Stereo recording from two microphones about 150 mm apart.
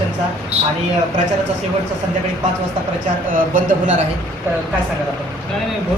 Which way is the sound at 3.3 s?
65° right (ahead or behind).